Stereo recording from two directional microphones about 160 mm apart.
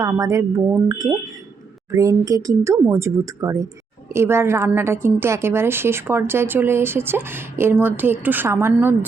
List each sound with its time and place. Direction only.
0.0 s a woman's voice: 20° right (ahead or behind)